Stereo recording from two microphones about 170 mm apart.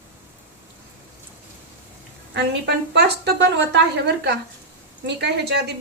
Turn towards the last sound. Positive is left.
turn(degrees=-90)